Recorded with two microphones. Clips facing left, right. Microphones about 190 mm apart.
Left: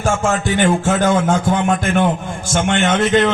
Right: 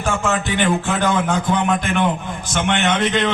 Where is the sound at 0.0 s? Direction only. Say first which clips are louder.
Left 3 dB; 45° left (ahead or behind).